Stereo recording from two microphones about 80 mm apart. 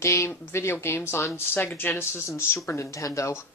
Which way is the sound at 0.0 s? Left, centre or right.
Left.